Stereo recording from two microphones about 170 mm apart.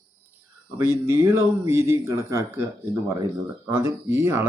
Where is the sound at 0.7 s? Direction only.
15° right (ahead or behind).